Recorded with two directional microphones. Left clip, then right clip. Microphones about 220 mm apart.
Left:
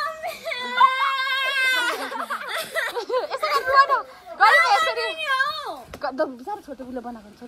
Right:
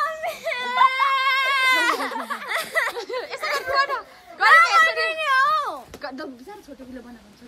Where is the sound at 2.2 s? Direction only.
45° right (ahead or behind).